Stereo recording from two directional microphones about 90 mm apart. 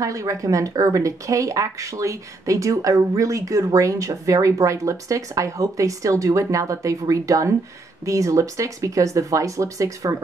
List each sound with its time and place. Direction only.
0.0 s speech: 40° right (ahead or behind)